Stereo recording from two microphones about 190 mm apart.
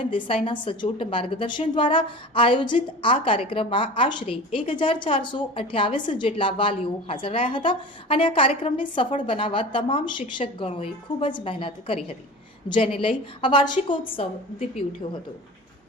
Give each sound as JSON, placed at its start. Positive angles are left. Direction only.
{"t": 0.1, "sound": "a woman's voice", "side_deg": 25}